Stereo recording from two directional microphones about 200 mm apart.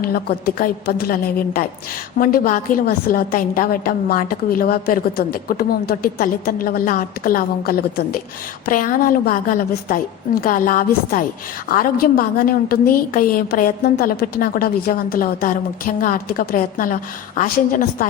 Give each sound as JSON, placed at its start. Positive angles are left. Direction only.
{"t": 0.0, "sound": "a woman's voice", "side_deg": 50}